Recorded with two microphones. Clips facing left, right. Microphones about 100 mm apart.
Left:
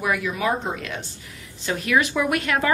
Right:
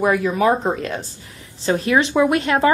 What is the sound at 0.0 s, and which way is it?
A woman's voice, 40° right (ahead or behind).